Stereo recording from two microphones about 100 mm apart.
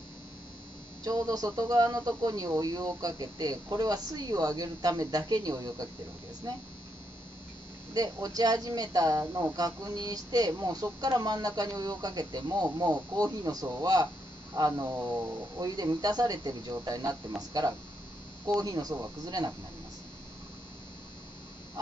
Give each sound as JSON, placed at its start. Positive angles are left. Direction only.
{"t": 1.0, "sound": "speech", "side_deg": -40}
{"t": 7.9, "sound": "speech", "side_deg": -40}